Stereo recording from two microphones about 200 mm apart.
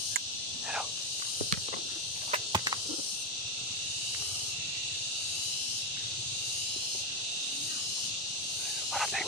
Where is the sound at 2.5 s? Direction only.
20° right (ahead or behind).